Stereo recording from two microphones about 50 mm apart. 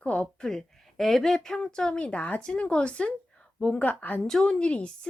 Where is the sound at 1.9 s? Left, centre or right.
Left.